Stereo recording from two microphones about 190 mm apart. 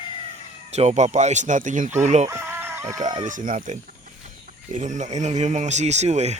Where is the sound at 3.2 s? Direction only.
45° right (ahead or behind).